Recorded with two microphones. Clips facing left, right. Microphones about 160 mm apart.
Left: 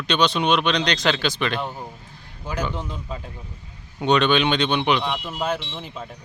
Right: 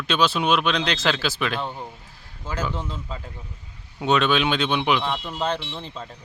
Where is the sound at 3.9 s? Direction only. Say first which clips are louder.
Left 2 dB; 5° right (ahead or behind).